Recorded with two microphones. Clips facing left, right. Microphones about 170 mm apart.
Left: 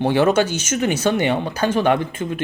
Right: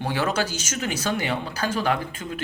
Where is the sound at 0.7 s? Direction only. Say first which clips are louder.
Left 9 dB; 25° left (ahead or behind).